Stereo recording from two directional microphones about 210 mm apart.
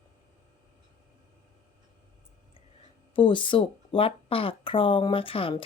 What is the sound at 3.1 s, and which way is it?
Speech, 25° left (ahead or behind).